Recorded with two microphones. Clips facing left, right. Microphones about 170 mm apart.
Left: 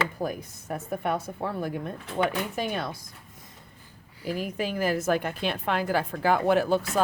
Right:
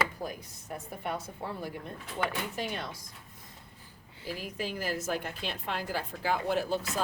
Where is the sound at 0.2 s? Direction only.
55° left (ahead or behind).